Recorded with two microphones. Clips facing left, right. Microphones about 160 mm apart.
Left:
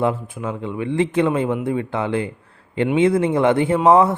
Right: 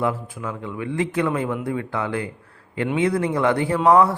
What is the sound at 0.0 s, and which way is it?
A man's voice, 25° left (ahead or behind).